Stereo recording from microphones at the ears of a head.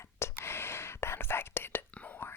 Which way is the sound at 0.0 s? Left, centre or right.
Left.